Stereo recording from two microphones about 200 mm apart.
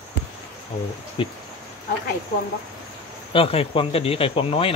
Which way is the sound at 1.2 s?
25° left (ahead or behind).